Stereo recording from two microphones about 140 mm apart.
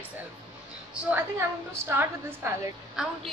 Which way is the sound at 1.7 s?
15° right (ahead or behind).